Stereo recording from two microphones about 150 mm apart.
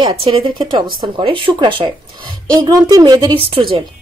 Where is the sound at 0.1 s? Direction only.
40° right (ahead or behind).